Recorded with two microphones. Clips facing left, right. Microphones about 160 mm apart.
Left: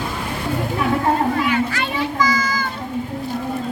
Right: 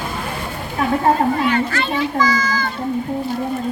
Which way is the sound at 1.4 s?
10° left (ahead or behind).